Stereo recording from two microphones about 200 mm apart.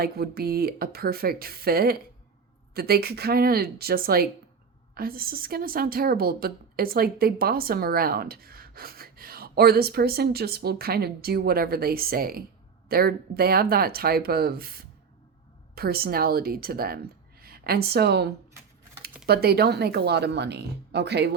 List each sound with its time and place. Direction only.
0.0 s a woman's voice: 50° right (ahead or behind)